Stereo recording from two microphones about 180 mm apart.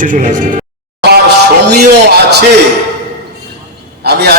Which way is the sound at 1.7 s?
65° right (ahead or behind).